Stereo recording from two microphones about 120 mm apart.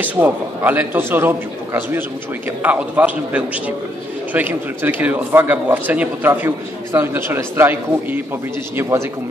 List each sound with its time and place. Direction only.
0.0 s speech: 15° right (ahead or behind)